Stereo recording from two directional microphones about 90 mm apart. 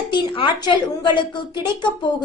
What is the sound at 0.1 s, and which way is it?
A woman's voice, 60° left (ahead or behind).